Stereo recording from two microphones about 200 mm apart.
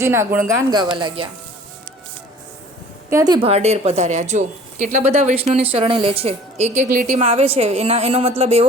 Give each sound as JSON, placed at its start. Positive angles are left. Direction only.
{"t": 0.0, "sound": "speech", "side_deg": -10}
{"t": 3.1, "sound": "a woman's voice", "side_deg": -15}